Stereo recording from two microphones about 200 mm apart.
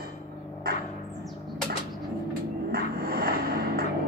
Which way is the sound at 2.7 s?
50° right (ahead or behind).